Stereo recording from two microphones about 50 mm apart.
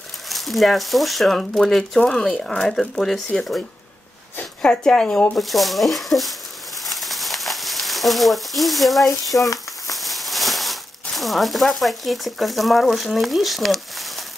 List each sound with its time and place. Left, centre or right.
0.3 s speech: centre
5.4 s speech: centre
6.8 s a sound: centre
9.3 s frying: left
9.9 s speech: centre